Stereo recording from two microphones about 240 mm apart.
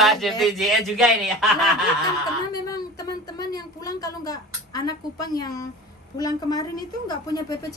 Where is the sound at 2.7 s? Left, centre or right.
Centre.